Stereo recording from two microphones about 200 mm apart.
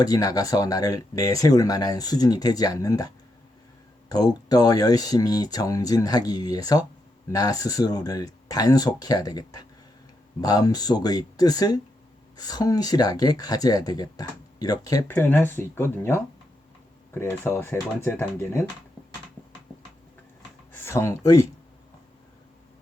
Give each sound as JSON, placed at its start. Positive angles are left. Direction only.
{"t": 0.0, "sound": "speech", "side_deg": 20}
{"t": 4.1, "sound": "speech", "side_deg": 20}
{"t": 20.7, "sound": "speech", "side_deg": 15}